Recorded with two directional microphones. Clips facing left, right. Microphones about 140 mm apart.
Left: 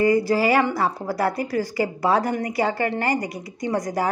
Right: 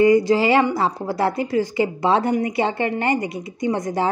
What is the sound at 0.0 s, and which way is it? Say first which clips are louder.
A woman's voice: right 4 dB; 20° right (ahead or behind).